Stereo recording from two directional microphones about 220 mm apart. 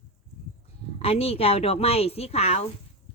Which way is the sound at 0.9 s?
25° left (ahead or behind).